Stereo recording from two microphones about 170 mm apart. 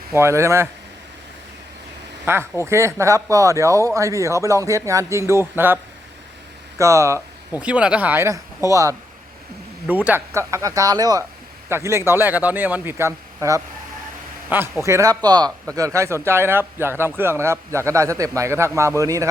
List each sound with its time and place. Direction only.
0.1 s speech: 15° right (ahead or behind)
2.2 s speech: 15° right (ahead or behind)